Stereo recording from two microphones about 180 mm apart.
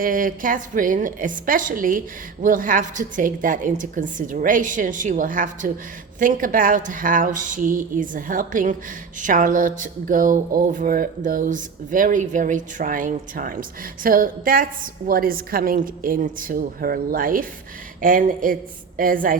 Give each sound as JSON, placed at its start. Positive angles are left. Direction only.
{"t": 0.0, "sound": "speech", "side_deg": -50}